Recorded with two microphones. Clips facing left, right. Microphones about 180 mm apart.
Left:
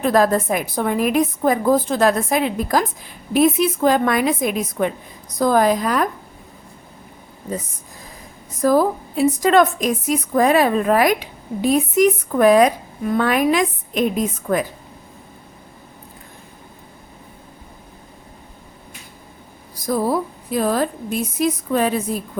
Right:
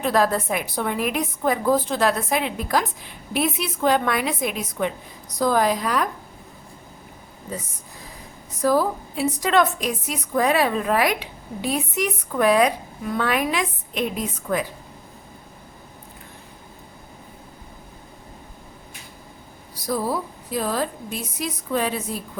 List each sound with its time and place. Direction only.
0.0 s a woman's voice: 45° left (ahead or behind)
8.6 s a woman's voice: 45° left (ahead or behind)
20.5 s a woman's voice: 55° left (ahead or behind)